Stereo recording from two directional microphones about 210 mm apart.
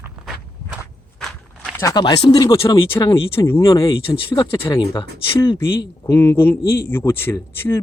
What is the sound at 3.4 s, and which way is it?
Speech, 10° left (ahead or behind).